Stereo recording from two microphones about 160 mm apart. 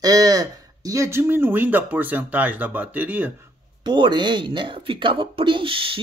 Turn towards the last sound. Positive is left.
turn(degrees=-35)  # may be behind; listen again after turning